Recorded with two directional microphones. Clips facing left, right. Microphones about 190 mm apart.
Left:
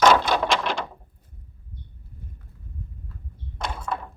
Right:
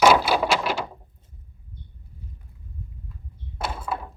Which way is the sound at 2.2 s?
55° left (ahead or behind).